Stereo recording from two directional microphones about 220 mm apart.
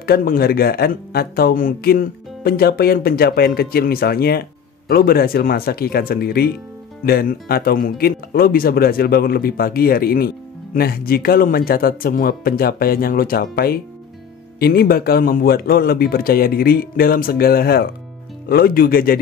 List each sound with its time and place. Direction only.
0.0 s speech: 40° left (ahead or behind)